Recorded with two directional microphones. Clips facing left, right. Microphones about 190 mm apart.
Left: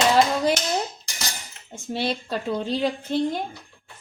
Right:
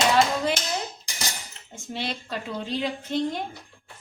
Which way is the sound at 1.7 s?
35° left (ahead or behind).